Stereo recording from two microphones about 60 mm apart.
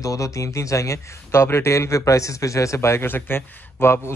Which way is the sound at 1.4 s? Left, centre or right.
Left.